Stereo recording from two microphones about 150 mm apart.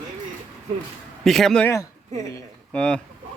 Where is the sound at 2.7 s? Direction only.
5° left (ahead or behind).